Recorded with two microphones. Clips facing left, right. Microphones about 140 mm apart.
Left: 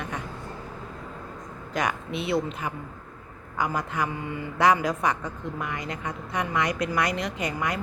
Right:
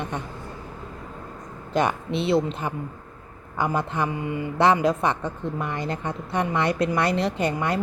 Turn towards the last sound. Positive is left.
turn(degrees=-30)  # may be behind; listen again after turning